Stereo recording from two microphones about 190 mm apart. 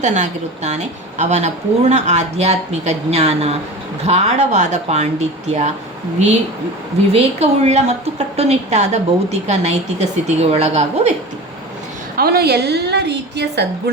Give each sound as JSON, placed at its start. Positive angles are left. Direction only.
{"t": 0.0, "sound": "a woman's voice", "side_deg": -40}
{"t": 7.1, "sound": "a woman's voice", "side_deg": -35}
{"t": 12.1, "sound": "a woman's voice", "side_deg": -55}